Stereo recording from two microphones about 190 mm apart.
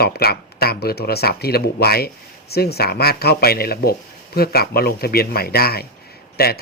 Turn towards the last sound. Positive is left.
turn(degrees=55)  # may be behind; listen again after turning